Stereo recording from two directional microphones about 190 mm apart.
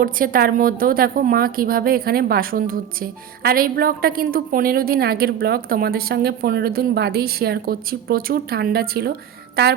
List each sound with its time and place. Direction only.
0.0 s a woman's voice: 50° right (ahead or behind)